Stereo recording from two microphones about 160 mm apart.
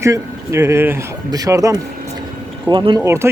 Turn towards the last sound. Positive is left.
turn(degrees=-15)  # may be behind; listen again after turning